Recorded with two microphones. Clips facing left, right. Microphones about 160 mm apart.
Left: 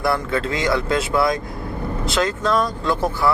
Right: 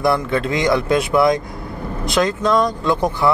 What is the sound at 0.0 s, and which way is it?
Speech, 20° right (ahead or behind).